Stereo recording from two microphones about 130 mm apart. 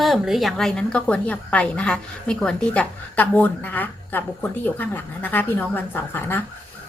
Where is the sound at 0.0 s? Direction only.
Centre (ahead or behind).